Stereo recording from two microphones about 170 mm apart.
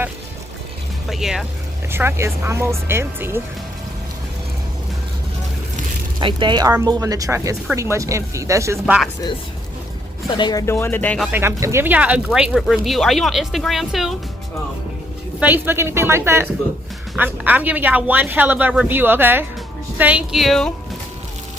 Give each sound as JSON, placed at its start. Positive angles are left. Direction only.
{"t": 1.1, "sound": "speech", "side_deg": 0}
{"t": 1.9, "sound": "speech", "side_deg": -15}
{"t": 6.1, "sound": "speech", "side_deg": -25}
{"t": 10.3, "sound": "speech", "side_deg": 25}
{"t": 10.7, "sound": "speech", "side_deg": 15}
{"t": 11.2, "sound": "speech", "side_deg": -10}
{"t": 15.4, "sound": "speech", "side_deg": -10}